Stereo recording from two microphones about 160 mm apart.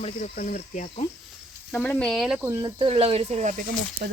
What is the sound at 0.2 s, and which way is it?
Speech, 60° left (ahead or behind).